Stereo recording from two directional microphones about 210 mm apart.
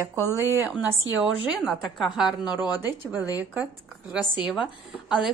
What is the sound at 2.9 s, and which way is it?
A woman's voice, 10° right (ahead or behind).